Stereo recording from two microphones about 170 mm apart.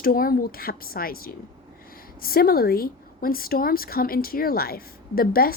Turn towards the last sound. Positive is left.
turn(degrees=60)  # may be behind; listen again after turning